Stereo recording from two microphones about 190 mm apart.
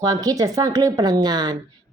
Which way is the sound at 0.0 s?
20° right (ahead or behind).